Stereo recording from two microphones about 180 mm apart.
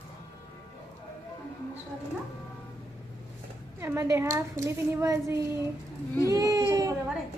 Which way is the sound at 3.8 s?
15° right (ahead or behind).